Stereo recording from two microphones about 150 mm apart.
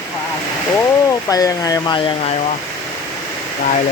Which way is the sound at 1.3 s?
25° left (ahead or behind).